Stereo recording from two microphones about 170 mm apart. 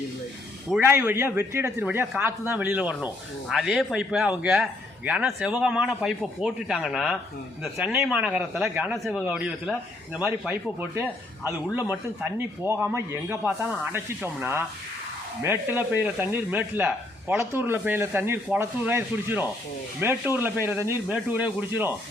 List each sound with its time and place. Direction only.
0.9 s speech: 15° right (ahead or behind)
15.4 s speech: 10° right (ahead or behind)